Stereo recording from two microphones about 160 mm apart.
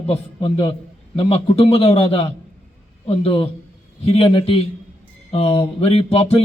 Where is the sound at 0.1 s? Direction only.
35° left (ahead or behind).